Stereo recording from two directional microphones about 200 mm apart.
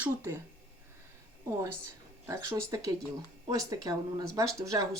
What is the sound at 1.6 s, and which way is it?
Speech, 15° right (ahead or behind).